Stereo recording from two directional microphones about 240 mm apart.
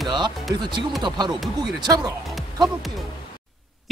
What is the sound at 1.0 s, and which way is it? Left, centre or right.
Speech, centre.